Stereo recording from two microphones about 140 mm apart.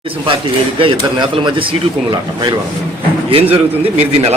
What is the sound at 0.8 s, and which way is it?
A man's voice, 35° right (ahead or behind).